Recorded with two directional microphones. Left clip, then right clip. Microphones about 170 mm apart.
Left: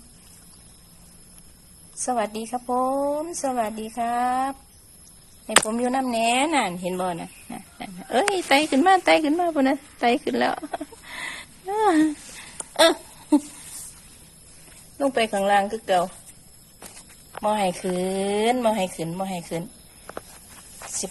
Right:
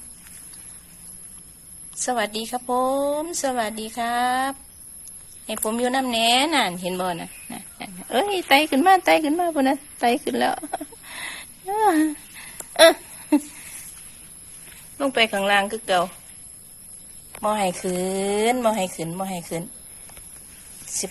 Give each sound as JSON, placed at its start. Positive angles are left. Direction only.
{"t": 2.0, "sound": "speech", "side_deg": -5}
{"t": 12.7, "sound": "a sound", "side_deg": 15}
{"t": 14.9, "sound": "speech", "side_deg": 10}
{"t": 17.4, "sound": "speech", "side_deg": 0}